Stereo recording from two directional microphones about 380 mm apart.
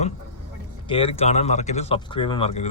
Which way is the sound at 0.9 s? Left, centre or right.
Centre.